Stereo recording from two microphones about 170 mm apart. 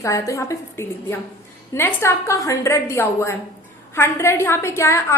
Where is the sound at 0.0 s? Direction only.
20° left (ahead or behind).